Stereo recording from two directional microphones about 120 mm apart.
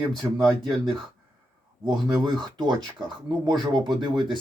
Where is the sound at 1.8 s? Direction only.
35° right (ahead or behind).